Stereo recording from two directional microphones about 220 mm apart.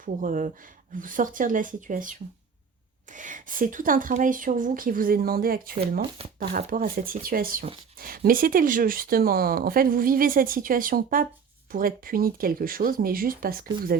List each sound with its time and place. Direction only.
0.0 s speech: 35° right (ahead or behind)
6.1 s speech: 25° right (ahead or behind)
6.5 s speech: 40° right (ahead or behind)